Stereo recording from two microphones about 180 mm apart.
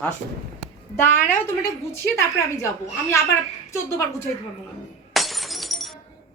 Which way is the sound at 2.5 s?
15° left (ahead or behind).